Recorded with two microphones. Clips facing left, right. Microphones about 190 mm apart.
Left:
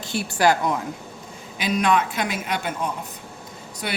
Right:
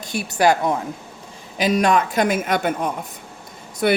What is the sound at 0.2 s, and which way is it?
Speech, 20° right (ahead or behind).